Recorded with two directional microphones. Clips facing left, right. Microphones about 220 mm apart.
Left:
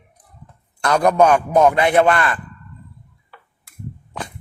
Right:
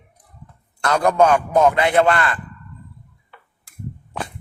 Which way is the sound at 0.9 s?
15° left (ahead or behind).